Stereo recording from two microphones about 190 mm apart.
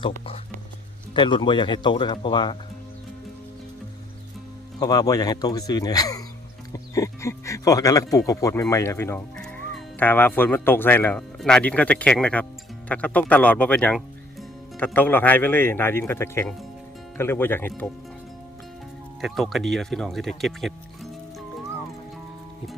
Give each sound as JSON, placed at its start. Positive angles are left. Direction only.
{"t": 1.1, "sound": "speech", "side_deg": 25}
{"t": 4.8, "sound": "speech", "side_deg": 20}
{"t": 19.2, "sound": "speech", "side_deg": 0}